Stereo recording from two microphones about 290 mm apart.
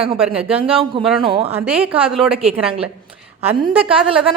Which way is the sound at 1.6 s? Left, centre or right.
Centre.